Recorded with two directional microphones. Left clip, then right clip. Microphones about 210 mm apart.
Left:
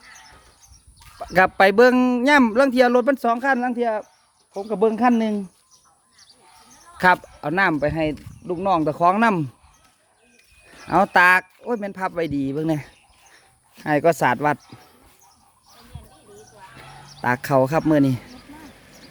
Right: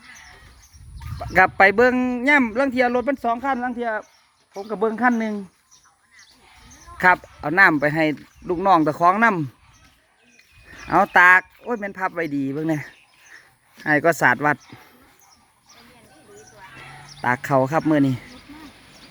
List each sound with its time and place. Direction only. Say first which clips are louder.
0.9 s speech: right 1 dB; 10° left (ahead or behind)
6.9 s speech: even; 10° left (ahead or behind)
8.4 s speech: right 3 dB; 5° right (ahead or behind); by 9.5 s 10° left (ahead or behind)
10.7 s speech: even; 10° left (ahead or behind)
17.2 s speech: left 1 dB; 10° left (ahead or behind)
18.3 s a sound: even; 50° left (ahead or behind)